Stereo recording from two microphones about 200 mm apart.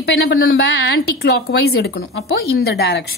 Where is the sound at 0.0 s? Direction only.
60° left (ahead or behind).